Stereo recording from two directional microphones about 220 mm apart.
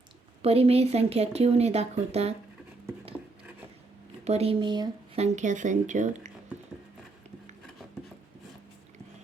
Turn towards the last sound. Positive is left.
turn(degrees=-30)  # may be behind; listen again after turning